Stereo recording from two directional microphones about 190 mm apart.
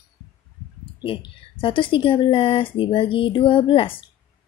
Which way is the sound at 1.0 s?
25° left (ahead or behind).